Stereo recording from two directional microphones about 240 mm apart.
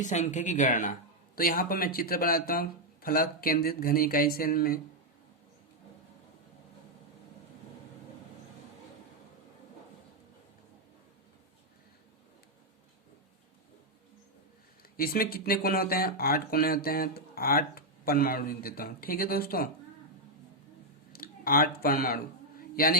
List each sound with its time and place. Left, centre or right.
0.0 s speech: left
14.9 s speech: left
21.1 s a sound: left